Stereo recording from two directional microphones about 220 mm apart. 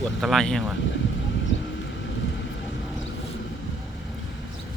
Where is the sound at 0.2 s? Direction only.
Centre (ahead or behind).